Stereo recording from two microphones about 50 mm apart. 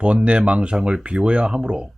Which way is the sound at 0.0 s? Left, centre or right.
Right.